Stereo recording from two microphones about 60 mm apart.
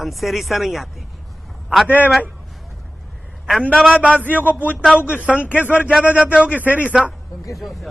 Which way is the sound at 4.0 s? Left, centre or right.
Left.